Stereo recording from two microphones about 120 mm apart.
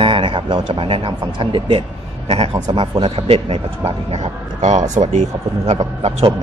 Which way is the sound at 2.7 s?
40° right (ahead or behind).